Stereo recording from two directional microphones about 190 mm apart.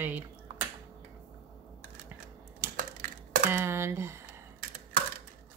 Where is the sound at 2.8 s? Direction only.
45° right (ahead or behind).